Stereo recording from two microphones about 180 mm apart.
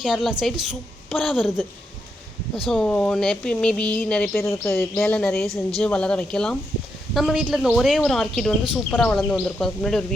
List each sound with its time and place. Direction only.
0.0 s speech: centre (ahead or behind)
2.6 s speech: 5° left (ahead or behind)